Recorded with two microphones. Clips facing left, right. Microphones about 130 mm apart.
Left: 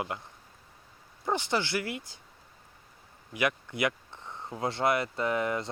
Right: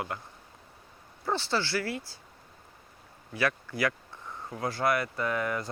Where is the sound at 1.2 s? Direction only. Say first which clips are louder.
Even; 15° left (ahead or behind).